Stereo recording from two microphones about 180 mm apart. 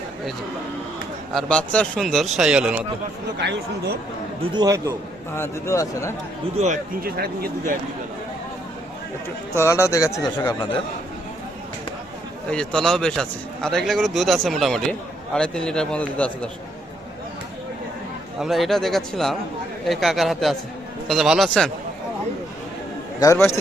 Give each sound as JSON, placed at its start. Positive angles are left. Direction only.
{"t": 1.3, "sound": "a man's voice", "side_deg": 5}
{"t": 3.4, "sound": "speech", "side_deg": -70}
{"t": 4.5, "sound": "a man's voice", "side_deg": -20}
{"t": 5.4, "sound": "speech", "side_deg": 15}
{"t": 6.6, "sound": "speech", "side_deg": -35}
{"t": 7.0, "sound": "speech", "side_deg": -55}
{"t": 9.6, "sound": "speech", "side_deg": 15}
{"t": 12.5, "sound": "a man's voice", "side_deg": 5}
{"t": 18.3, "sound": "a man's voice", "side_deg": 0}
{"t": 23.2, "sound": "speech", "side_deg": 15}